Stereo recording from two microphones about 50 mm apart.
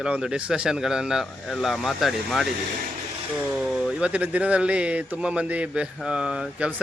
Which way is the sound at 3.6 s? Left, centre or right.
Centre.